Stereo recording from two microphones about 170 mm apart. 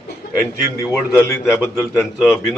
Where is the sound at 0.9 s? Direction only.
15° left (ahead or behind).